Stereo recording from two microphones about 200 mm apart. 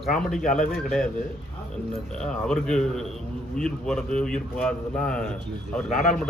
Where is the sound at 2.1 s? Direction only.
5° left (ahead or behind).